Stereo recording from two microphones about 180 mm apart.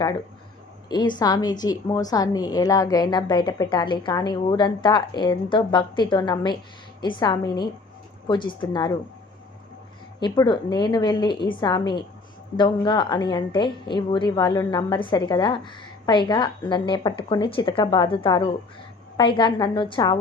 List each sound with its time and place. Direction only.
0.9 s a woman's voice: 25° left (ahead or behind)
10.2 s a woman's voice: 25° left (ahead or behind)